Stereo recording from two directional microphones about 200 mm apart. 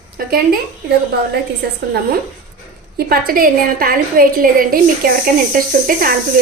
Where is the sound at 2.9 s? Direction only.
50° right (ahead or behind).